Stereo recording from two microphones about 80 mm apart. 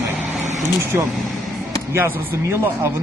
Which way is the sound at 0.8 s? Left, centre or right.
Right.